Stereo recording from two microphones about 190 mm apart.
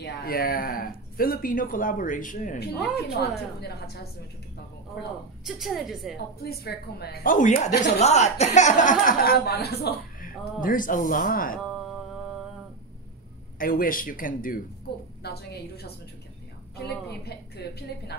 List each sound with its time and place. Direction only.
0.0 s speech: 50° left (ahead or behind)
3.2 s a woman's voice: 55° left (ahead or behind)
5.4 s a woman's voice: centre (ahead or behind)
6.4 s speech: 55° left (ahead or behind)
13.6 s speech: 50° left (ahead or behind)
15.2 s a woman's voice: 55° left (ahead or behind)